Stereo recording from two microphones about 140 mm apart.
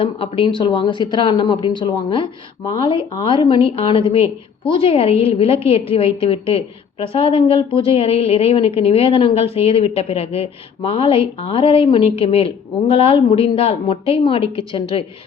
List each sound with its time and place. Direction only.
0.0 s a woman's voice: 40° left (ahead or behind)